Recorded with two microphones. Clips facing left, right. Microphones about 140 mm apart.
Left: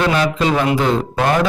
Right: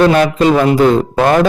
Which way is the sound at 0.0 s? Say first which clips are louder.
Right 7 dB; 45° right (ahead or behind).